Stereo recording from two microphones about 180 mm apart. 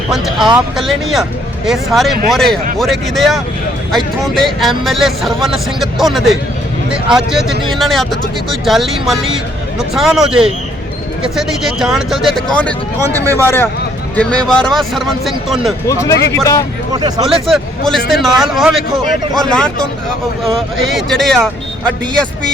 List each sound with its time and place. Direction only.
0.5 s speech: centre (ahead or behind)
13.1 s speech: 15° right (ahead or behind)
13.4 s speech: 10° left (ahead or behind)
15.9 s speech: 20° left (ahead or behind)
16.9 s speech: 20° right (ahead or behind)
17.4 s speech: centre (ahead or behind)